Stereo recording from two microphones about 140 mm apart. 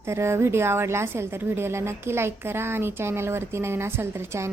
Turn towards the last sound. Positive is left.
turn(degrees=-20)  # may be behind; listen again after turning